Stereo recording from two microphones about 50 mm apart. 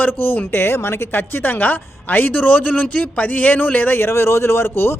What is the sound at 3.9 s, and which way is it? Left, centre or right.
Speech, left.